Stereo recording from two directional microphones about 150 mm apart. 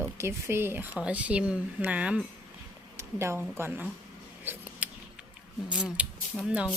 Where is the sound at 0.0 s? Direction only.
15° right (ahead or behind).